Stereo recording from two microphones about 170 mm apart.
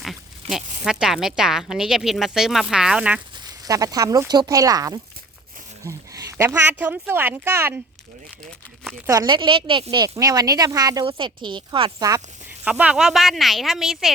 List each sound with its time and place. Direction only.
0.0 s speech: centre (ahead or behind)
3.4 s a woman's voice: 20° right (ahead or behind)
9.0 s a woman's voice: 25° right (ahead or behind)
12.6 s speech: 10° right (ahead or behind)